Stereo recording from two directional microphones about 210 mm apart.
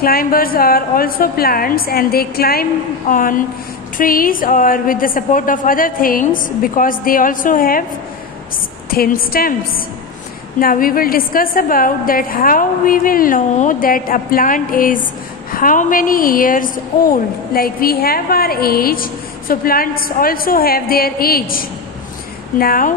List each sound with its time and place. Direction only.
0.0 s a woman's voice: 45° left (ahead or behind)
8.9 s a woman's voice: 45° left (ahead or behind)